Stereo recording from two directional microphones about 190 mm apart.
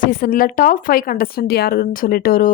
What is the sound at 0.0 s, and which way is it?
A woman's voice, 50° left (ahead or behind).